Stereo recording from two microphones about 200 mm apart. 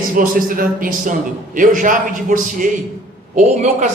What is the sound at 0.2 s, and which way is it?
A man's voice, 45° right (ahead or behind).